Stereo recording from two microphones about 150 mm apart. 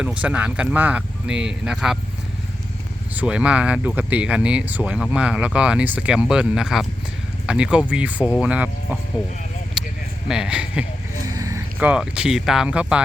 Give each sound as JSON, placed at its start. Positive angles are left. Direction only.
{"t": 0.0, "sound": "speech", "side_deg": -5}
{"t": 3.2, "sound": "speech", "side_deg": -5}
{"t": 9.8, "sound": "a sound", "side_deg": -5}
{"t": 10.2, "sound": "speech", "side_deg": -5}
{"t": 11.2, "sound": "vehicle", "side_deg": -25}
{"t": 11.8, "sound": "speech", "side_deg": -10}